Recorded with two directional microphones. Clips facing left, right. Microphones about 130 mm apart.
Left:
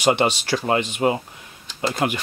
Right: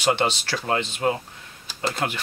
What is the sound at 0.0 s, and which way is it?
Speech, 15° left (ahead or behind).